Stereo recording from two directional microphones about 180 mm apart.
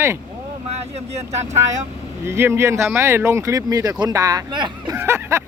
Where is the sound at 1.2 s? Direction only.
40° right (ahead or behind).